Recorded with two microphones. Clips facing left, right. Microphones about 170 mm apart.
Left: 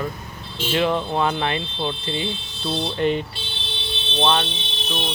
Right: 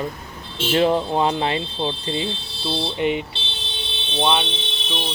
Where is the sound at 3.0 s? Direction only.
15° right (ahead or behind).